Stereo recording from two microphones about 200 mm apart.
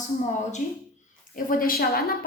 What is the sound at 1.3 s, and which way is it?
Speech, 45° left (ahead or behind).